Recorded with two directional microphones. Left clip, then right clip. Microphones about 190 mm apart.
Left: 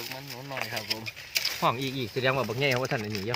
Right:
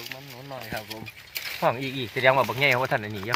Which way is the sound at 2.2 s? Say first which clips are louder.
Right 7 dB; 25° right (ahead or behind).